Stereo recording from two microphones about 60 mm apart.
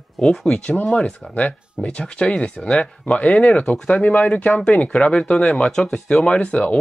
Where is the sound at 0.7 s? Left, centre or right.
Left.